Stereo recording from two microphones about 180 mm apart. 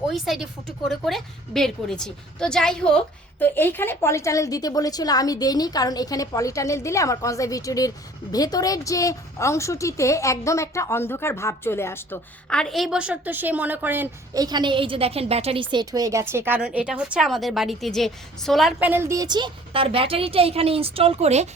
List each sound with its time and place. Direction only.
0.1 s a woman's voice: centre (ahead or behind); by 21.5 s 35° right (ahead or behind)